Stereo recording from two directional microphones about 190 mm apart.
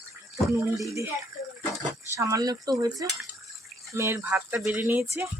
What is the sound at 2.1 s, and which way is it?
Cutlery, 15° right (ahead or behind).